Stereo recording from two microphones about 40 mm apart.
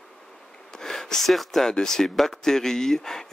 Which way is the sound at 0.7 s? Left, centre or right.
Centre.